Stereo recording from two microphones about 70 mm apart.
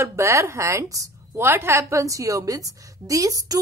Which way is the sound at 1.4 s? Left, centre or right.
Right.